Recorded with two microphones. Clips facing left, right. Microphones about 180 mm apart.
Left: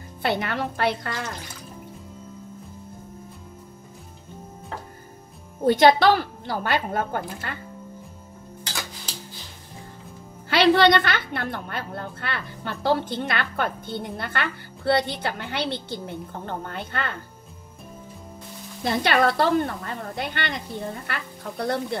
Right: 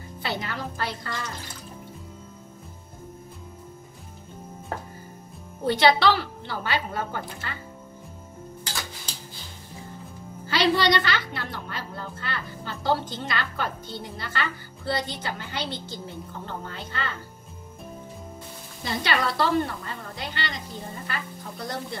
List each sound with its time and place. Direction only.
0.2 s a woman's voice: 60° left (ahead or behind)
5.7 s a woman's voice: 45° left (ahead or behind)
10.5 s a woman's voice: 60° left (ahead or behind)
18.9 s a woman's voice: 55° left (ahead or behind)